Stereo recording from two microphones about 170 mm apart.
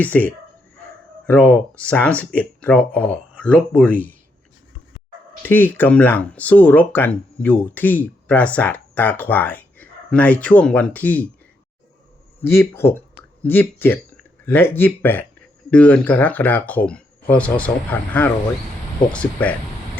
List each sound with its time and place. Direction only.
0.0 s speech: 10° left (ahead or behind)
5.4 s speech: 10° left (ahead or behind)
12.4 s speech: 15° left (ahead or behind)